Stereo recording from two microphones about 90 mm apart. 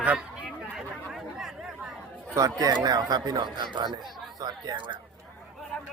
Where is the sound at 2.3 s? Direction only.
40° right (ahead or behind).